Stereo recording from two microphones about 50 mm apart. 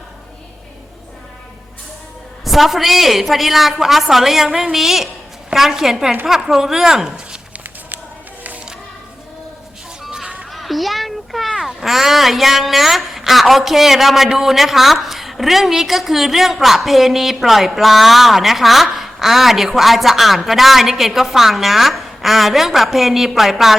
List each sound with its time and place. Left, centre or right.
2.4 s speech: centre
10.1 s music: centre
10.5 s a child's voice: centre